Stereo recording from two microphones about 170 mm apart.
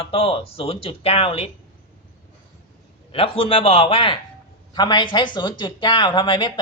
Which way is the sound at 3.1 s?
35° left (ahead or behind).